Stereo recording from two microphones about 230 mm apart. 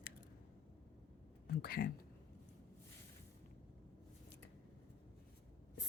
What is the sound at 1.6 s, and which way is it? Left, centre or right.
Speech, left.